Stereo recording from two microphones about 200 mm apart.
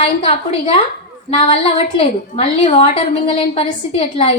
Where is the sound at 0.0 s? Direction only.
25° left (ahead or behind).